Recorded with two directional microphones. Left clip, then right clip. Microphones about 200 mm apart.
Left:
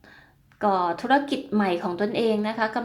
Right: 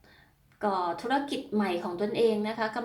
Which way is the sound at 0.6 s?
40° left (ahead or behind).